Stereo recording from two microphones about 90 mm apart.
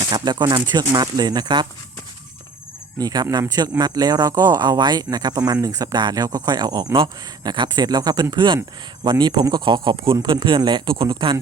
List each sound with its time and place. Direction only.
0.1 s speech: 50° right (ahead or behind)
3.0 s speech: 45° right (ahead or behind)
6.9 s speech: 60° right (ahead or behind)